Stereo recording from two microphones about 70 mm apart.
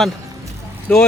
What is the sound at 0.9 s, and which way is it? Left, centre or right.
Speech, centre.